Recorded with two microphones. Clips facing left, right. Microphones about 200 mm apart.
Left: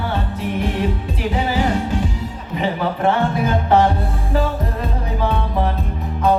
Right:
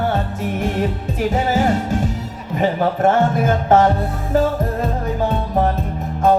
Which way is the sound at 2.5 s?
45° right (ahead or behind).